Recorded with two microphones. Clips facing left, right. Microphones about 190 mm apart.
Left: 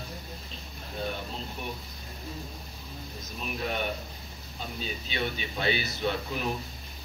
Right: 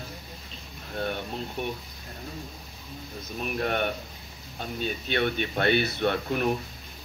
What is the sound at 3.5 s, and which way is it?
Speech, 55° right (ahead or behind).